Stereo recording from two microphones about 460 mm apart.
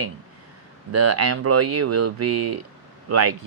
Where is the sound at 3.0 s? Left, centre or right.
Right.